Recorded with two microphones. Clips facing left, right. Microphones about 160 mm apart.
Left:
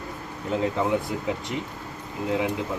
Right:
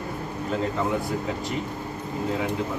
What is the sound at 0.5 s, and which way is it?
Speech, 15° left (ahead or behind).